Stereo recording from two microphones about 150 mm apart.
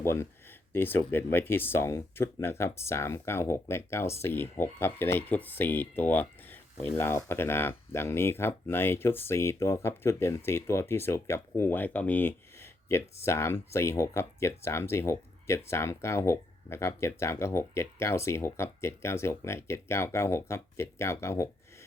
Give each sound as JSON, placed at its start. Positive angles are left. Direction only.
{"t": 0.0, "sound": "speech", "side_deg": 15}
{"t": 6.0, "sound": "a sound", "side_deg": 10}
{"t": 6.9, "sound": "speech", "side_deg": 15}